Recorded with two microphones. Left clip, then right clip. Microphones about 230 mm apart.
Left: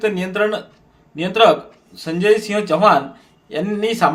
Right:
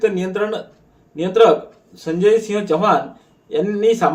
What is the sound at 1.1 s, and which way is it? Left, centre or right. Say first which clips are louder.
Speech: right 1 dB; left.